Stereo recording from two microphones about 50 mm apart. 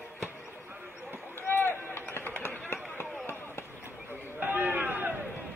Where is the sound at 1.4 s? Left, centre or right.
Left.